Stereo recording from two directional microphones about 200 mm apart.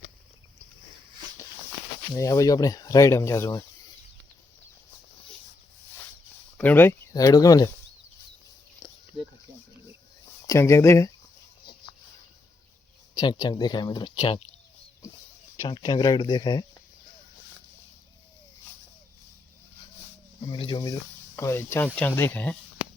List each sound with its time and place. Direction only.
2.1 s speech: 15° left (ahead or behind)
6.6 s speech: 10° left (ahead or behind)
8.8 s a sound: 25° left (ahead or behind)
10.4 s speech: 15° left (ahead or behind)
13.1 s speech: 20° left (ahead or behind)
15.6 s speech: 25° left (ahead or behind)
20.5 s speech: 25° left (ahead or behind); by 22.5 s 10° left (ahead or behind)